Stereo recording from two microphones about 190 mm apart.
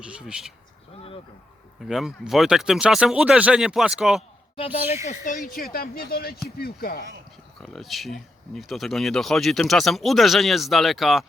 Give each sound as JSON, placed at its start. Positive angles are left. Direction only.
{"t": 0.0, "sound": "speech", "side_deg": -5}
{"t": 1.8, "sound": "speech", "side_deg": 0}
{"t": 4.5, "sound": "speech", "side_deg": 30}
{"t": 5.2, "sound": "speech", "side_deg": 45}
{"t": 7.6, "sound": "speech", "side_deg": 0}